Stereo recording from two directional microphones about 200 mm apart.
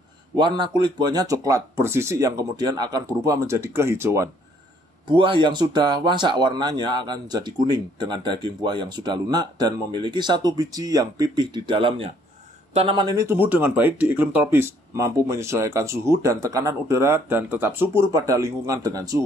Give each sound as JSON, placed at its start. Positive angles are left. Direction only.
{"t": 0.4, "sound": "speech", "side_deg": -25}
{"t": 5.0, "sound": "speech", "side_deg": -25}